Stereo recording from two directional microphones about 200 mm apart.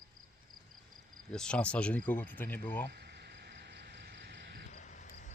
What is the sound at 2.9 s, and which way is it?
Cricket, 55° right (ahead or behind).